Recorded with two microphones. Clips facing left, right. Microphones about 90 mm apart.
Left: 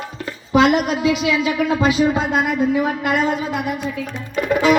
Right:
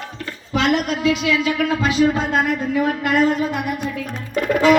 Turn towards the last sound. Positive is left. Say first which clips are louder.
# right 1 dB
turn(degrees=10)  # may be behind; listen again after turning